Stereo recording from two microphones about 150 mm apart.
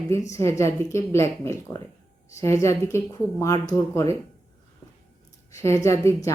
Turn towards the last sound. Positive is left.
turn(degrees=20)  # may be behind; listen again after turning